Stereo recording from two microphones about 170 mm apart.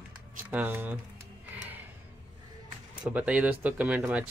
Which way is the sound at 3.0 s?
10° right (ahead or behind).